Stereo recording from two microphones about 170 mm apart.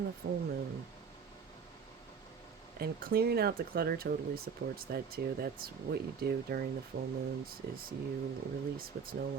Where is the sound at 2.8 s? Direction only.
65° right (ahead or behind).